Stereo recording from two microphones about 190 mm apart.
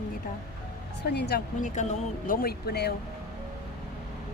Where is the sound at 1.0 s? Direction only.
60° left (ahead or behind).